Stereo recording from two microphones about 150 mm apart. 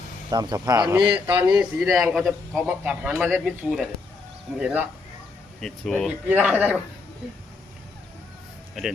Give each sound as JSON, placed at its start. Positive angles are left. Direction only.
{"t": 0.3, "sound": "speech", "side_deg": -30}
{"t": 1.1, "sound": "a man's voice", "side_deg": -10}
{"t": 5.5, "sound": "speech", "side_deg": 5}
{"t": 6.2, "sound": "a man's voice", "side_deg": -10}